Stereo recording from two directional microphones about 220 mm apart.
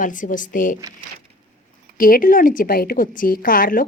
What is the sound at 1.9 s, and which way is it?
A woman's voice, 40° left (ahead or behind).